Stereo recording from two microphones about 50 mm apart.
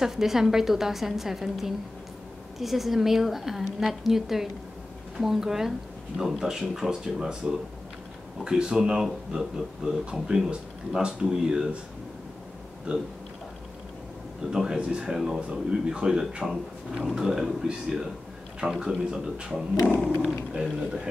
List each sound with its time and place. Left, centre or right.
0.0 s a woman's voice: centre
12.9 s speech: centre
14.5 s speech: centre